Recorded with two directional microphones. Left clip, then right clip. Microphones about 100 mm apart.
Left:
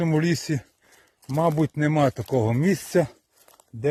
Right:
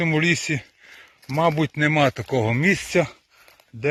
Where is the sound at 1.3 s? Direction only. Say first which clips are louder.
Right 2 dB; 35° left (ahead or behind).